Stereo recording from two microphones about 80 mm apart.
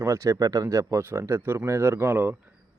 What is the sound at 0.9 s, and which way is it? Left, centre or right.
Speech, right.